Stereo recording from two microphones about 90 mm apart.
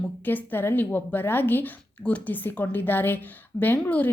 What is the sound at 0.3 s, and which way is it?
Speech, 20° left (ahead or behind).